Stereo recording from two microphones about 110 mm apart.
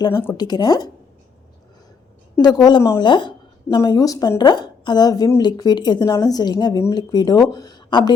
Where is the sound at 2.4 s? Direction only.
40° left (ahead or behind).